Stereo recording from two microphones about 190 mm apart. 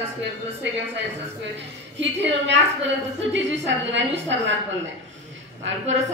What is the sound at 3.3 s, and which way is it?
A woman's voice, 70° right (ahead or behind).